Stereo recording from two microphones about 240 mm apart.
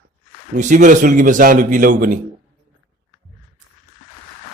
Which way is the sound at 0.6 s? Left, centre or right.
Right.